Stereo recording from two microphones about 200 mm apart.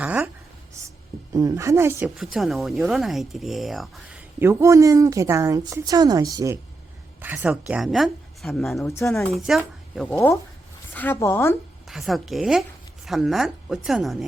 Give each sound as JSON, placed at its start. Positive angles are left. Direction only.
{"t": 0.0, "sound": "a woman's voice", "side_deg": -5}
{"t": 0.8, "sound": "a sound", "side_deg": -15}
{"t": 1.3, "sound": "a woman's voice", "side_deg": -15}
{"t": 11.9, "sound": "speech", "side_deg": 0}